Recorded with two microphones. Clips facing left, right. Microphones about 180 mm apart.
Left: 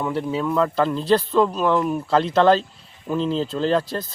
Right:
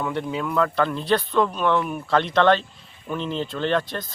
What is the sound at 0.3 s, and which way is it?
Speech, 25° left (ahead or behind).